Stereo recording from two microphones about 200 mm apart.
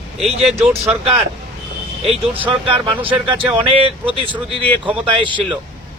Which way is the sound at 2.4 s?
25° right (ahead or behind).